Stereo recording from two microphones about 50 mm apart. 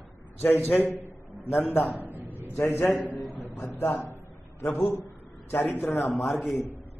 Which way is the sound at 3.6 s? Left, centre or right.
Left.